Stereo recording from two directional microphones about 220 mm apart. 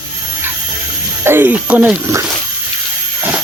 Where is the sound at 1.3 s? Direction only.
10° right (ahead or behind).